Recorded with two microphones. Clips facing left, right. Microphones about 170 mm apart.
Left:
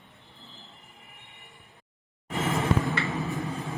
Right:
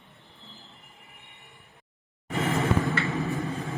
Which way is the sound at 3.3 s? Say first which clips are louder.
Right 2 dB; 35° right (ahead or behind).